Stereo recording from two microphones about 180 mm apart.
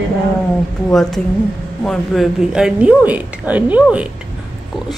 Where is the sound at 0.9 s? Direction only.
Centre (ahead or behind).